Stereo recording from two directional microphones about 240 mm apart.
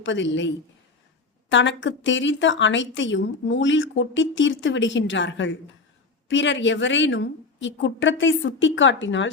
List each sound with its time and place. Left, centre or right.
0.0 s speech: left